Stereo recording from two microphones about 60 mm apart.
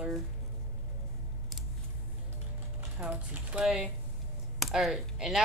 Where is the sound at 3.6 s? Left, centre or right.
Centre.